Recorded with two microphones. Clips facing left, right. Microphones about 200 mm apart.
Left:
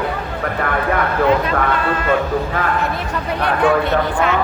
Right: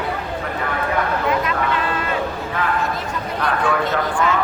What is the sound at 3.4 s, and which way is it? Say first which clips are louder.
Speech: left 5 dB; 65° left (ahead or behind).